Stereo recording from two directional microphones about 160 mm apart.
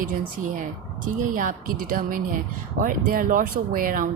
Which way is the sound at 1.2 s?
55° right (ahead or behind).